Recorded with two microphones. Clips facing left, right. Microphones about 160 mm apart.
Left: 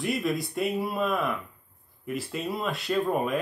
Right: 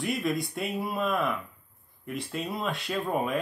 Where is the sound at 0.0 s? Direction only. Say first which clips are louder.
Left 1 dB; centre (ahead or behind).